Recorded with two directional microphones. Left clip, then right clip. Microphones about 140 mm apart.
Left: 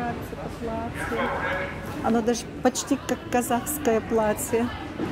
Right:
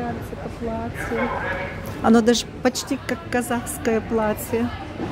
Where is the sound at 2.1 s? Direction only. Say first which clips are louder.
Right 8 dB; 65° right (ahead or behind).